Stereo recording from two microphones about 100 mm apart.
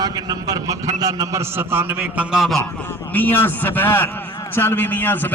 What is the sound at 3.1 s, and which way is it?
A man's voice, 20° left (ahead or behind).